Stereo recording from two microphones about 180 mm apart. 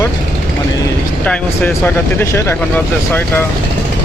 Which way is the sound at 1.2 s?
5° left (ahead or behind).